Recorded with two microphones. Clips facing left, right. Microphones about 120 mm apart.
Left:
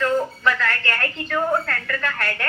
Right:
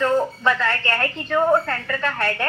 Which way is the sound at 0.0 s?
25° right (ahead or behind).